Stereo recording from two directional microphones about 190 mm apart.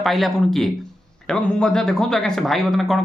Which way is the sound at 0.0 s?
Centre (ahead or behind).